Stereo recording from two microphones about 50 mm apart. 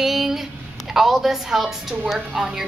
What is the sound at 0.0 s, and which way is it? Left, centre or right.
A woman's voice, centre.